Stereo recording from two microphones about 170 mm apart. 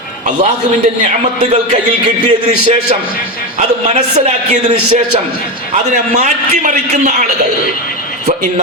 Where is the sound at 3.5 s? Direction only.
40° right (ahead or behind).